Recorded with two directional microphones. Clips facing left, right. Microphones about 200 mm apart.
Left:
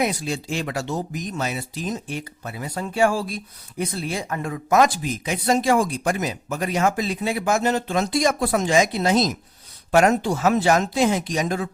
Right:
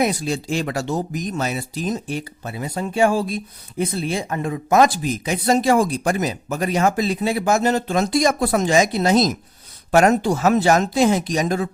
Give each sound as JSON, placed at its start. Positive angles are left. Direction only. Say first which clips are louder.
{"t": 0.0, "sound": "speech", "louder": "right 3 dB", "side_deg": -40}